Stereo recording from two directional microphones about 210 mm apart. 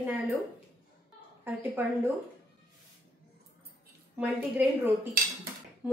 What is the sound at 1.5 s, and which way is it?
Speech, 10° right (ahead or behind).